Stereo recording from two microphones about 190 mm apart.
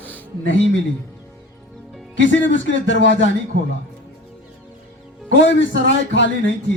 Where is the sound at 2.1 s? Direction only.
75° left (ahead or behind).